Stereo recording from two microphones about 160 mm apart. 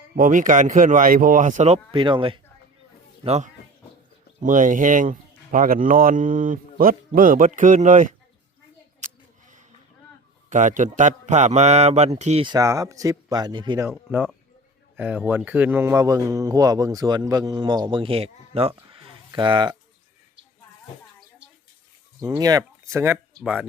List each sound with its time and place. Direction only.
0.2 s speech: 55° right (ahead or behind)
1.9 s speech: 30° right (ahead or behind)
3.2 s speech: 45° right (ahead or behind)
9.0 s a sound: 50° right (ahead or behind)
10.5 s speech: 50° right (ahead or behind)
12.5 s speech: 20° right (ahead or behind)
13.9 s speech: 10° right (ahead or behind); by 18.7 s 40° right (ahead or behind)
18.9 s a sound: 35° right (ahead or behind)
22.4 s speech: 20° right (ahead or behind)
23.4 s speech: 5° right (ahead or behind)